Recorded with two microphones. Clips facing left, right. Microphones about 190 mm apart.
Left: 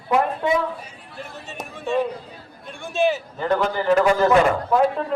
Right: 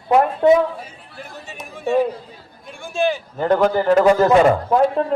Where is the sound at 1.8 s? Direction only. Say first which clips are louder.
Right 4 dB; 5° right (ahead or behind).